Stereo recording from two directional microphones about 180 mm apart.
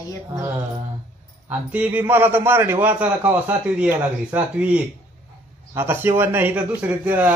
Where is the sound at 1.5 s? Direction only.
10° right (ahead or behind).